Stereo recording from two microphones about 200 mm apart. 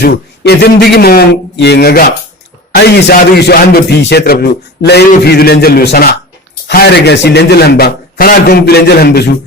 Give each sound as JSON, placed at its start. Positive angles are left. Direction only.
{"t": 0.0, "sound": "a man's voice", "side_deg": 55}